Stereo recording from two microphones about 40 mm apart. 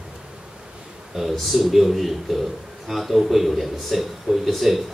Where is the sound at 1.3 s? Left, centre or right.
Centre.